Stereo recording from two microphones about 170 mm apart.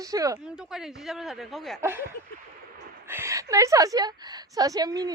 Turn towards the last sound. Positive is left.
turn(degrees=-20)  # may be behind; listen again after turning